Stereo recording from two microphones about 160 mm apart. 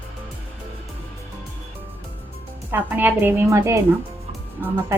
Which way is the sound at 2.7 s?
10° right (ahead or behind).